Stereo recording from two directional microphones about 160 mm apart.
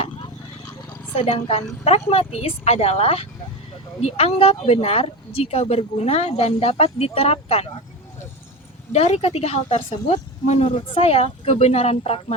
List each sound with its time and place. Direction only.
1.1 s speech: 40° left (ahead or behind)
8.9 s a woman's voice: 40° left (ahead or behind)
10.8 s speech: 35° left (ahead or behind)